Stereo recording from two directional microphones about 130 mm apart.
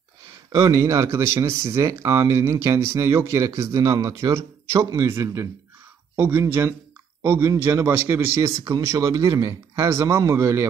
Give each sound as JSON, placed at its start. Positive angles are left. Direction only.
{"t": 0.5, "sound": "speech", "side_deg": -20}